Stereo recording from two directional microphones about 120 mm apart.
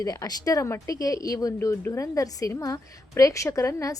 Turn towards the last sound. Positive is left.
turn(degrees=25)  # may be behind; listen again after turning